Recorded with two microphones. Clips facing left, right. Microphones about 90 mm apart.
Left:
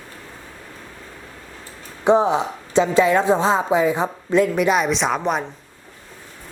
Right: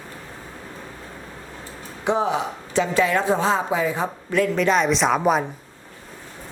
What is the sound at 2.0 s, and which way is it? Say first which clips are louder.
A woman's voice: left 5 dB; 30° left (ahead or behind).